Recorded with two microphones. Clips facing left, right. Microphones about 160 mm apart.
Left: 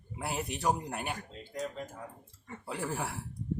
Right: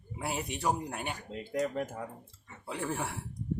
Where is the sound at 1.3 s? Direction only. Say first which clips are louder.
Right 6 dB; 70° right (ahead or behind).